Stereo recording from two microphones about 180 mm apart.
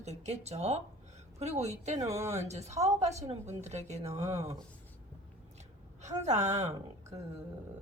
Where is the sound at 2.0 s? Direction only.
15° right (ahead or behind).